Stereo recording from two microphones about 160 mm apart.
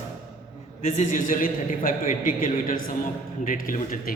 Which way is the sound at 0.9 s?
55° left (ahead or behind).